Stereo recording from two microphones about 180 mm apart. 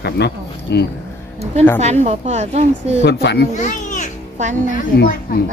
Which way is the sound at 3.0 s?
70° left (ahead or behind).